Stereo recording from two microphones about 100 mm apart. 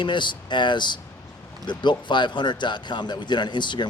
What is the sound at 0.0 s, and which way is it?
A man's voice, 50° left (ahead or behind).